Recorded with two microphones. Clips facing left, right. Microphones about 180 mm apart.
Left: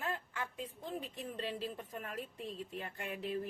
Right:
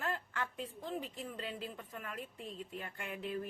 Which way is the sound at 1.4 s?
30° left (ahead or behind).